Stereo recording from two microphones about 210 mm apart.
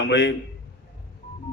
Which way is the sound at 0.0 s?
55° left (ahead or behind).